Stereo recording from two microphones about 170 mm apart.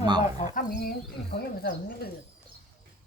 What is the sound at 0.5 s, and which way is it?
Speech, 60° left (ahead or behind).